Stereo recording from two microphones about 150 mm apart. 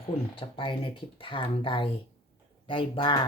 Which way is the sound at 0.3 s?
35° left (ahead or behind).